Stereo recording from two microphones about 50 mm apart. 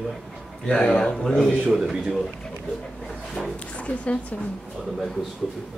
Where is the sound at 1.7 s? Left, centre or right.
Centre.